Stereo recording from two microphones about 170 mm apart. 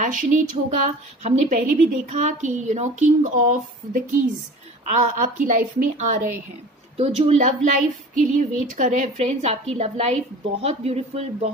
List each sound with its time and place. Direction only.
0.0 s a woman's voice: 50° right (ahead or behind)
7.0 s a woman's voice: 40° right (ahead or behind)